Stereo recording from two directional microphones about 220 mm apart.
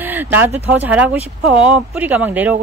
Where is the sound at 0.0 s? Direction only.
10° right (ahead or behind).